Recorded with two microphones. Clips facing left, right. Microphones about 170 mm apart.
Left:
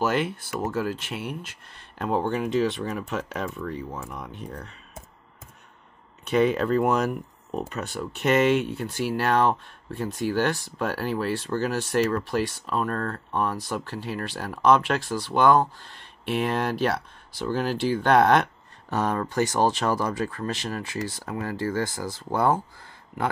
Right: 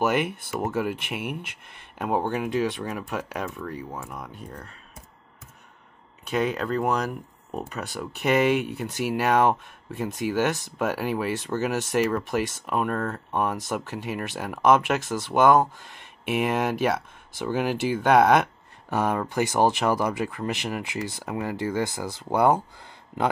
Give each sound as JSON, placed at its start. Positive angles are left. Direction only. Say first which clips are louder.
{"t": 0.0, "sound": "speech", "louder": "right 1 dB", "side_deg": -15}
{"t": 2.0, "sound": "speech", "louder": "even", "side_deg": -10}
{"t": 6.3, "sound": "speech", "louder": "left 4 dB", "side_deg": 0}
{"t": 7.7, "sound": "speech", "louder": "left 1 dB", "side_deg": -15}